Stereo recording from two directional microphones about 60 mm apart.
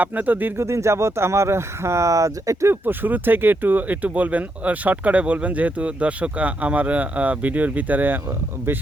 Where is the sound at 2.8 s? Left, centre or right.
Right.